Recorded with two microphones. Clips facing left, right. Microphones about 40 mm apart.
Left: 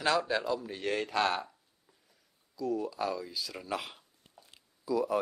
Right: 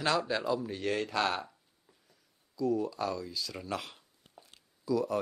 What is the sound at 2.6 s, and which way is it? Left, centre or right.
A man's voice, centre.